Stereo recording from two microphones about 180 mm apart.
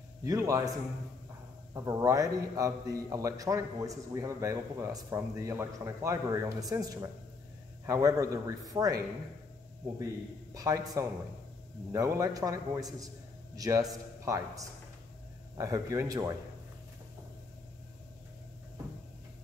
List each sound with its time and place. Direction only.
0.2 s a man's voice: 15° right (ahead or behind)
10.5 s a man's voice: 20° right (ahead or behind)
11.9 s a man's voice: 15° right (ahead or behind)